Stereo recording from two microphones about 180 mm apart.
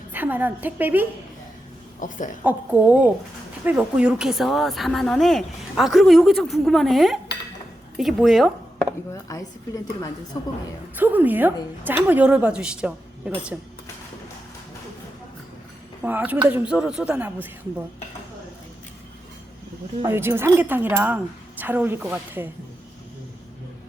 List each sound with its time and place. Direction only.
0.1 s a woman's voice: 10° right (ahead or behind)
2.0 s speech: 45° left (ahead or behind)
2.4 s a woman's voice: 10° right (ahead or behind)
9.1 s a woman's voice: 20° left (ahead or behind)
10.9 s a woman's voice: 10° right (ahead or behind)
16.0 s a woman's voice: 10° right (ahead or behind)
20.1 s a woman's voice: 15° right (ahead or behind)